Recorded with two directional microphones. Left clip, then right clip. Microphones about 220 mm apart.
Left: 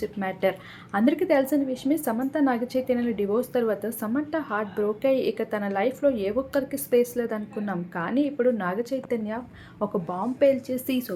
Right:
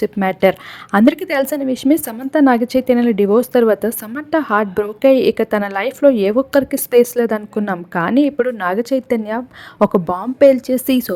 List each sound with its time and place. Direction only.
0.0 s a woman's voice: 50° right (ahead or behind)